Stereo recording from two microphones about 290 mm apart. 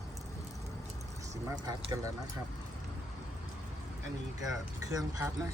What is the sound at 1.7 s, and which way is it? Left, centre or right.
Speech, centre.